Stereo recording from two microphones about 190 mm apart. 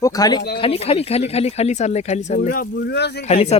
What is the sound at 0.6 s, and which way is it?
Speech, 30° left (ahead or behind).